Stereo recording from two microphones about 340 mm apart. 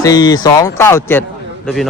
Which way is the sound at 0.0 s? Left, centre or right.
Centre.